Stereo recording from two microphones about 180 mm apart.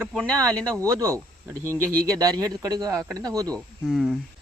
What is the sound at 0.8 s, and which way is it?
Speech, 20° right (ahead or behind).